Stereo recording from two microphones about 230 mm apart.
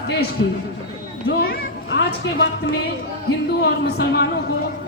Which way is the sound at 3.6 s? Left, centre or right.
Left.